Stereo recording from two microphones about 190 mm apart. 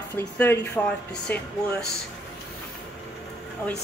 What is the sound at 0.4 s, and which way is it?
Speech, 10° left (ahead or behind).